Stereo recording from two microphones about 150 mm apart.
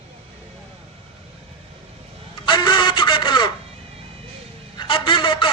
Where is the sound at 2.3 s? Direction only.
30° left (ahead or behind).